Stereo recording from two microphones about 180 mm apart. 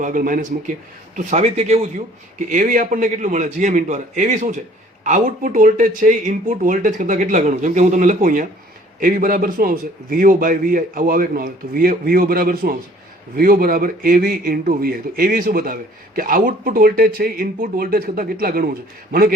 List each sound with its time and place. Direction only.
0.0 s a man's voice: 45° right (ahead or behind)